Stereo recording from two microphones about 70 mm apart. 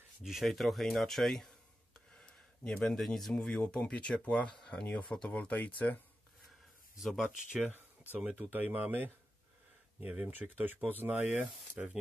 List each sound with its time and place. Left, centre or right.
0.2 s speech: centre
2.0 s a sound: centre
3.3 s speech: centre
7.0 s speech: centre
8.1 s speech: right